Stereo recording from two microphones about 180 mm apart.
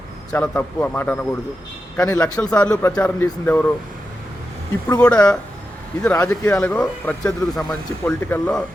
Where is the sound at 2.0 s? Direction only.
20° left (ahead or behind).